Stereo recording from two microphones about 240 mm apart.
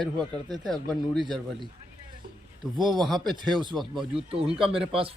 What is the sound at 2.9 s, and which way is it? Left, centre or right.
Speech, centre.